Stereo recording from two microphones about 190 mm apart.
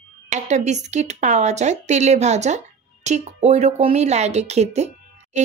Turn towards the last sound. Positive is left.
turn(degrees=-35)  # may be behind; listen again after turning